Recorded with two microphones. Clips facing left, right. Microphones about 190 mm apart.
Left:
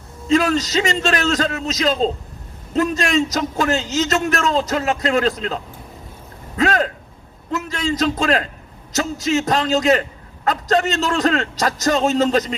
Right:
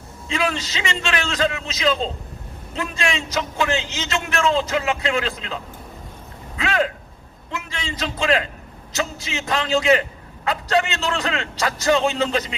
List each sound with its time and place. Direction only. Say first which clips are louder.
0.3 s a man's voice: left 8 dB; 40° left (ahead or behind)
6.6 s a man's voice: left 4 dB; 40° left (ahead or behind)